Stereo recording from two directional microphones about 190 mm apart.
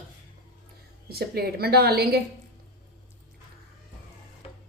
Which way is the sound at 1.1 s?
55° right (ahead or behind).